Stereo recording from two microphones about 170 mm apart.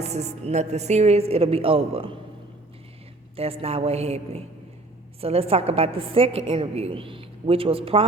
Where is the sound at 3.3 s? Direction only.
35° right (ahead or behind).